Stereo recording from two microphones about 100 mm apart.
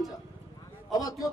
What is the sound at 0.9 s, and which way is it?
Speech, 35° left (ahead or behind).